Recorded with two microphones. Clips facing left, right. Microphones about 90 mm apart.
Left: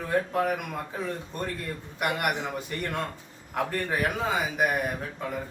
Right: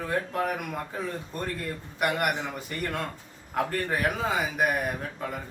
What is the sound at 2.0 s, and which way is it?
Speech, centre (ahead or behind).